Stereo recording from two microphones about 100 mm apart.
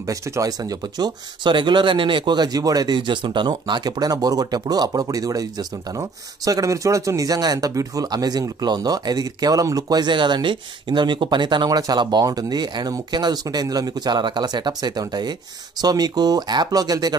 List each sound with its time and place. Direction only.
0.0 s speech: 35° right (ahead or behind)